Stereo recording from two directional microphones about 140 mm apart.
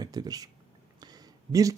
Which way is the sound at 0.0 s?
30° right (ahead or behind).